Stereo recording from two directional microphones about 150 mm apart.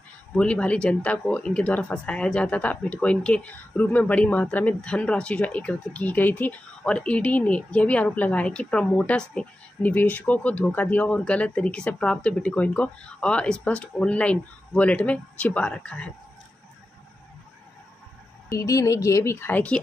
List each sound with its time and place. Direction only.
0.4 s speech: 5° left (ahead or behind)
18.5 s speech: 25° left (ahead or behind)